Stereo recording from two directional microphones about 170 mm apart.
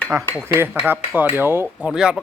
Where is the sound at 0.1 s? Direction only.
15° right (ahead or behind).